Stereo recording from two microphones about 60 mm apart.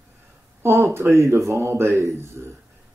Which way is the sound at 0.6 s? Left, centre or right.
Right.